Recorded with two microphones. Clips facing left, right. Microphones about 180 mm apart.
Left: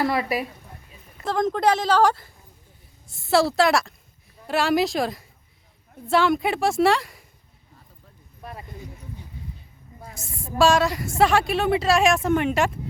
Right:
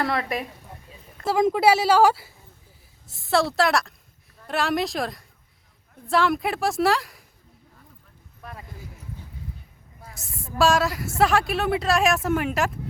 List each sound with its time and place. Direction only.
0.0 s speech: 5° left (ahead or behind)
1.2 s a woman's voice: 10° right (ahead or behind)
8.4 s speech: 25° left (ahead or behind)
10.2 s a sound: centre (ahead or behind)
10.6 s speech: centre (ahead or behind)